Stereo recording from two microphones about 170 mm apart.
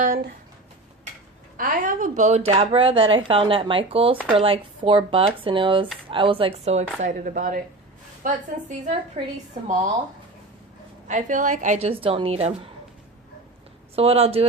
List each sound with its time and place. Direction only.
1.5 s a woman's voice: 55° right (ahead or behind); by 6.8 s 35° right (ahead or behind)
7.0 s speech: 50° right (ahead or behind)
8.8 s a woman's voice: 40° right (ahead or behind)
11.1 s a woman's voice: 50° right (ahead or behind)
13.9 s a woman's voice: 35° right (ahead or behind)